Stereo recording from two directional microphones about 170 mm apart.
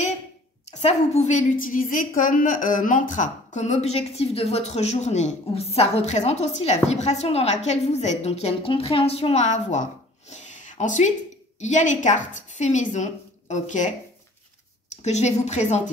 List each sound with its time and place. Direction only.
0.7 s a woman's voice: 40° left (ahead or behind)
10.3 s a sound: 45° left (ahead or behind)
11.6 s a woman's voice: 45° left (ahead or behind)
15.0 s a woman's voice: 40° left (ahead or behind)